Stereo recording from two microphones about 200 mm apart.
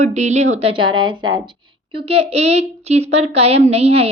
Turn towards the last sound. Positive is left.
turn(degrees=-30)  # may be behind; listen again after turning